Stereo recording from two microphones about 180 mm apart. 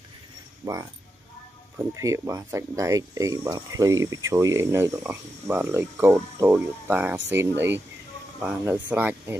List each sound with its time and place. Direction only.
0.6 s speech: 20° right (ahead or behind)